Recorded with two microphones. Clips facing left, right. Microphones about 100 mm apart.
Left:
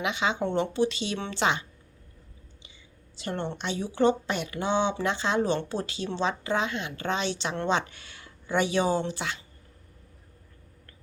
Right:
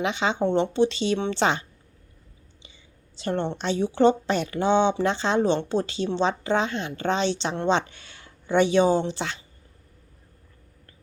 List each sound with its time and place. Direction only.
0.0 s a woman's voice: 30° right (ahead or behind)
3.2 s a woman's voice: 30° right (ahead or behind)